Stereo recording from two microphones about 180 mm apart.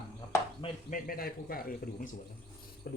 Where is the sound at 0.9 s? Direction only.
55° left (ahead or behind).